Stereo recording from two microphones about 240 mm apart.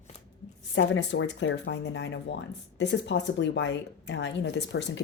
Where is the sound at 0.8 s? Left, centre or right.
Left.